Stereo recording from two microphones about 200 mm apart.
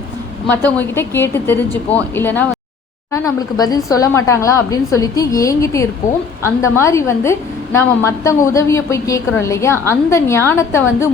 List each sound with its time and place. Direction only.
0.4 s a woman's voice: 10° left (ahead or behind)
3.6 s a woman's voice: 20° left (ahead or behind)